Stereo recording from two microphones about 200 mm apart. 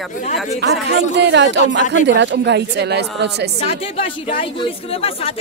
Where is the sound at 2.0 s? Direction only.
60° right (ahead or behind).